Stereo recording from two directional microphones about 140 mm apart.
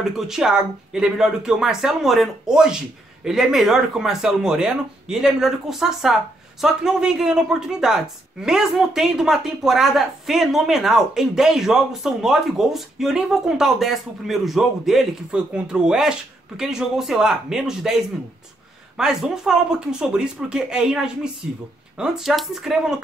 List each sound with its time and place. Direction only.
0.0 s speech: 5° right (ahead or behind)